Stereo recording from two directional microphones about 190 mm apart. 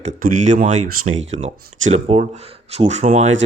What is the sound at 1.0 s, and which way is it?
Speech, 90° right.